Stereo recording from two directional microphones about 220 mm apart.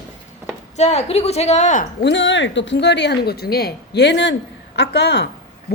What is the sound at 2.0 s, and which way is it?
Speech, 55° left (ahead or behind).